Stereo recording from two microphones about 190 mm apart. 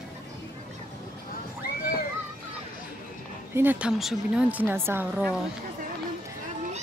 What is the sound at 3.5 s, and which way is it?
Speech, 10° right (ahead or behind).